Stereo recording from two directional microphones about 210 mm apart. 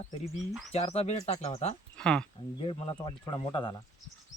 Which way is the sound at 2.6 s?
25° left (ahead or behind).